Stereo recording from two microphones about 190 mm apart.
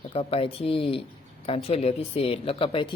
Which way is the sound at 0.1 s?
30° left (ahead or behind).